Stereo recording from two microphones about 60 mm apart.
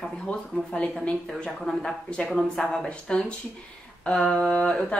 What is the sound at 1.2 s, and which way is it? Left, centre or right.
A woman's voice, centre.